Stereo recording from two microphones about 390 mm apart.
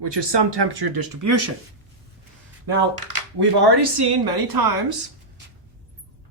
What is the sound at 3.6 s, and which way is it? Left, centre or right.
A woman's voice, right.